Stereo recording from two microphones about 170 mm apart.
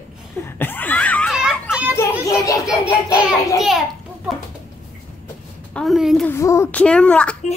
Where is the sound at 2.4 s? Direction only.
20° left (ahead or behind).